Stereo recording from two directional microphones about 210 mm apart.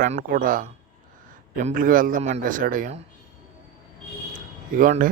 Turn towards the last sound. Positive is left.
turn(degrees=-40)  # may be behind; listen again after turning